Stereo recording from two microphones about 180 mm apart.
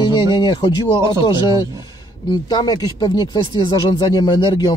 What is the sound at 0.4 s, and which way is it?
Speech, 25° left (ahead or behind).